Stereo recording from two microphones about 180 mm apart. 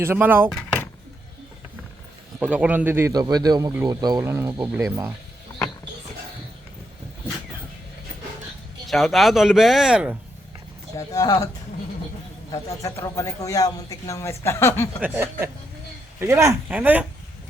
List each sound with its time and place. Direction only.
0.0 s speech: 10° right (ahead or behind)
2.4 s speech: 5° right (ahead or behind)
8.9 s speech: centre (ahead or behind)
10.9 s speech: 20° left (ahead or behind)
12.5 s a man's voice: 15° left (ahead or behind)
15.0 s speech: 15° right (ahead or behind)